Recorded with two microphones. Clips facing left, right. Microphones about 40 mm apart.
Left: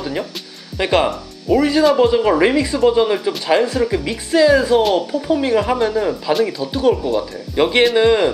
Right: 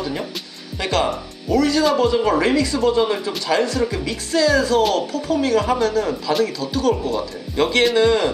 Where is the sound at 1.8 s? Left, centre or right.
Centre.